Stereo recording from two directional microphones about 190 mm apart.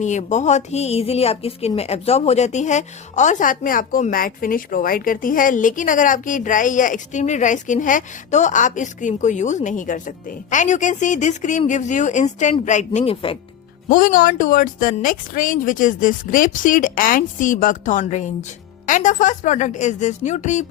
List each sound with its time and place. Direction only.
0.0 s a woman's voice: 40° left (ahead or behind)
13.8 s a woman's voice: 45° left (ahead or behind)